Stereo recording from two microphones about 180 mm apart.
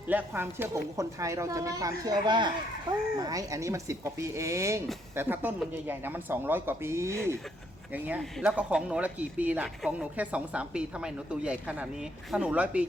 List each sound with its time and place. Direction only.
0.1 s speech: 10° right (ahead or behind)